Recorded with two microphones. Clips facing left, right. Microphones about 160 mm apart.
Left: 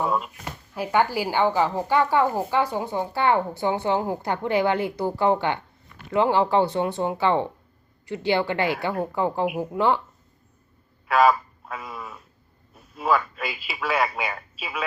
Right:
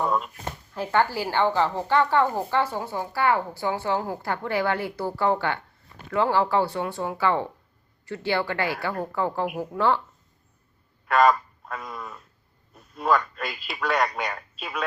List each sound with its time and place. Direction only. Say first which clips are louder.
0.0 s speech: even; 5° left (ahead or behind)
11.1 s a sound: left 1 dB; 5° left (ahead or behind)
12.7 s speech: even; 5° left (ahead or behind)